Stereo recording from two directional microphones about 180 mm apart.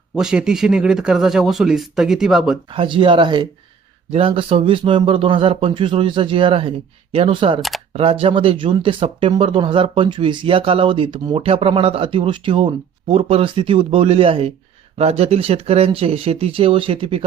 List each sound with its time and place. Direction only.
0.2 s speech: 5° right (ahead or behind)
2.6 s speech: 30° right (ahead or behind)